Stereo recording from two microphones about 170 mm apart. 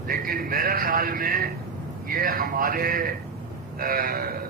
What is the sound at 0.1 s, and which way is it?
A man's voice, 60° right (ahead or behind).